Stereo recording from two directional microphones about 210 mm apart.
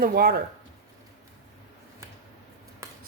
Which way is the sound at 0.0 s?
45° right (ahead or behind).